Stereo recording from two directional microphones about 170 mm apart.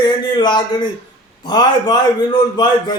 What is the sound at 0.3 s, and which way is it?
Speech, 25° left (ahead or behind).